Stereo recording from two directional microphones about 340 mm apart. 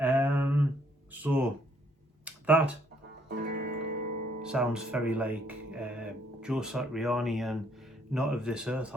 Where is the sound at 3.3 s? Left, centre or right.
Right.